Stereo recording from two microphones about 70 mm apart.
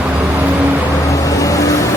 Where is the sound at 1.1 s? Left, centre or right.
Left.